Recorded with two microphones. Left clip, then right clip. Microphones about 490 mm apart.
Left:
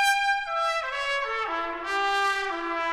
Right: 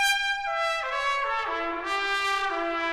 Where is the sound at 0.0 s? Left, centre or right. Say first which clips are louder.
Left 2 dB; centre.